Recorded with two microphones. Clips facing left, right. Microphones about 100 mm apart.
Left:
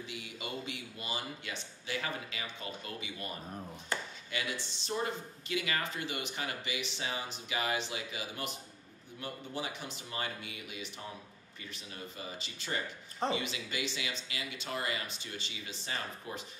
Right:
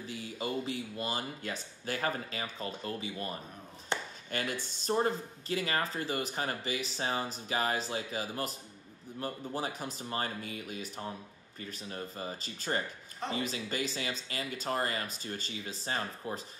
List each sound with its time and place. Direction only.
0.0 s speech: 35° right (ahead or behind)
3.9 s a sound: 25° right (ahead or behind)
4.3 s speech: 45° right (ahead or behind)